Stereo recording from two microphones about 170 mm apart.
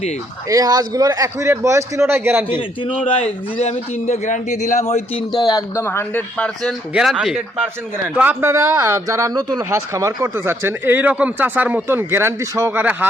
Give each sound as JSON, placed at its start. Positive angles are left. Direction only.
{"t": 0.4, "sound": "speech", "side_deg": -20}
{"t": 4.0, "sound": "a man's voice", "side_deg": 40}
{"t": 5.3, "sound": "a man's voice", "side_deg": 25}